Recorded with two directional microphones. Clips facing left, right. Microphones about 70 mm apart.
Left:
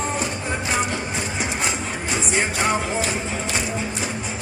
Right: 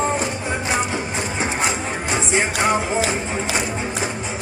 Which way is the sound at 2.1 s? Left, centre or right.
Right.